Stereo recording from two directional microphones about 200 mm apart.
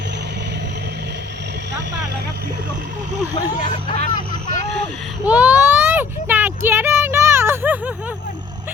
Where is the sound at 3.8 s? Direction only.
35° left (ahead or behind).